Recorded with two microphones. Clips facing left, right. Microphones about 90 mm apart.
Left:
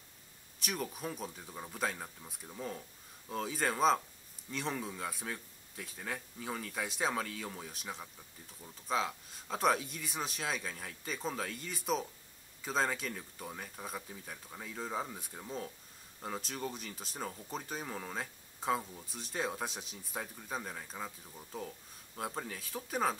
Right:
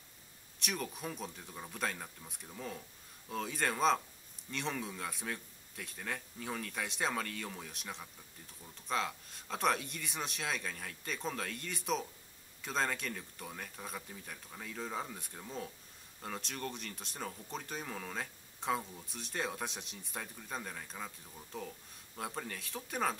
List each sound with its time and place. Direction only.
0.6 s speech: centre (ahead or behind)